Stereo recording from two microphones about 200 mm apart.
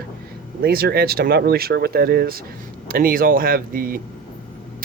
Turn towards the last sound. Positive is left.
turn(degrees=-45)  # may be behind; listen again after turning